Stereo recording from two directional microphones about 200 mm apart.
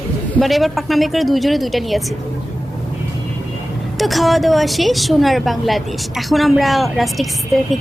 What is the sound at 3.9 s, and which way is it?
A woman's voice, centre (ahead or behind).